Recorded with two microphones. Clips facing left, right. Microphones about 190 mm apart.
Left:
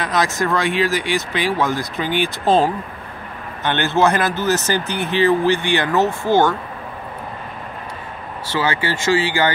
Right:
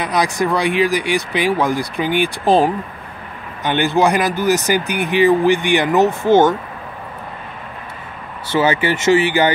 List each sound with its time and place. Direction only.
0.0 s speech: 15° right (ahead or behind)
8.5 s speech: 20° right (ahead or behind)